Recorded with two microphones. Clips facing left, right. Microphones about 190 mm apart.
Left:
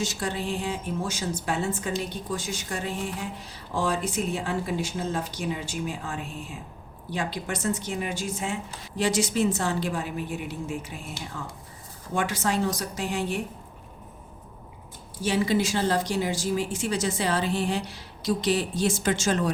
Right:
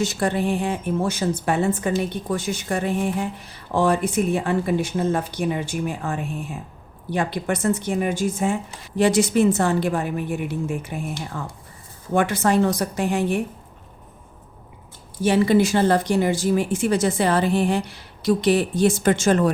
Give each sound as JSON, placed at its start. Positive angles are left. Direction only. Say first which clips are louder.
{"t": 0.0, "sound": "speech", "louder": "right 8 dB", "side_deg": -60}
{"t": 15.2, "sound": "speech", "louder": "right 7 dB", "side_deg": -55}